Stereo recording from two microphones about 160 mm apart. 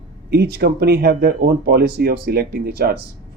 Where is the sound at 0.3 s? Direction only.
90° right.